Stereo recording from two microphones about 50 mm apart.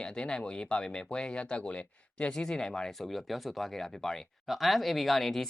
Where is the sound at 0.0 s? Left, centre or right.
Centre.